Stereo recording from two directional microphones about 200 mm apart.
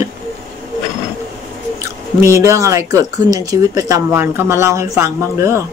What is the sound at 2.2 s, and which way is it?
Speech, 15° right (ahead or behind).